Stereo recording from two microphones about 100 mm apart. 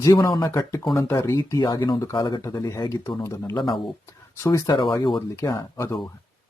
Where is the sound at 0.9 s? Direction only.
25° left (ahead or behind); by 2.4 s 45° left (ahead or behind).